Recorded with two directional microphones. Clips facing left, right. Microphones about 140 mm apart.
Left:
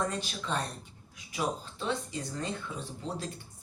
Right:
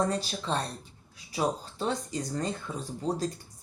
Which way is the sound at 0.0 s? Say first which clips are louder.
Right 4 dB; 35° right (ahead or behind).